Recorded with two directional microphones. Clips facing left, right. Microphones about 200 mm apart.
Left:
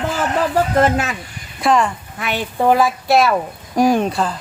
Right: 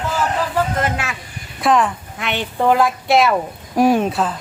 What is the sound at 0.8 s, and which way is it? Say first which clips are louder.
Speech: left 6 dB; 40° left (ahead or behind).